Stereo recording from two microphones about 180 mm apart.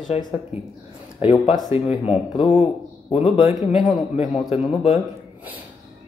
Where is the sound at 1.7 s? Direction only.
35° left (ahead or behind).